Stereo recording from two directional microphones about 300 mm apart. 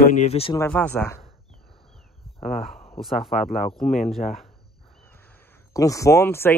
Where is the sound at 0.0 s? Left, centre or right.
Left.